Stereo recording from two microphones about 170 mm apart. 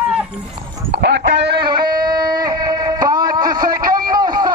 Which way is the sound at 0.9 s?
85° right.